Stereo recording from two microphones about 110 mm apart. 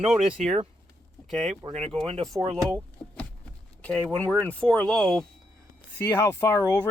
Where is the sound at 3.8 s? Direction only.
15° left (ahead or behind).